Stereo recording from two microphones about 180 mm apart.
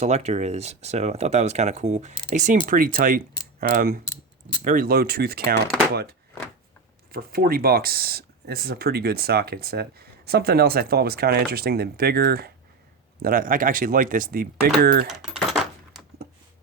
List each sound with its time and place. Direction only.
0.0 s speech: 35° right (ahead or behind); by 15.1 s 60° right (ahead or behind)
15.1 s speech: centre (ahead or behind)